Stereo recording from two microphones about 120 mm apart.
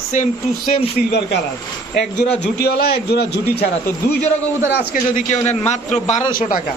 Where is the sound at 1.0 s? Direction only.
90° left.